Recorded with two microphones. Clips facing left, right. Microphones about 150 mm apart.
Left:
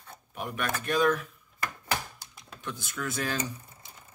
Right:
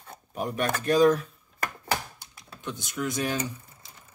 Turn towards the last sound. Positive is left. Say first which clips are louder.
# right 3 dB
turn(degrees=-20)  # may be behind; listen again after turning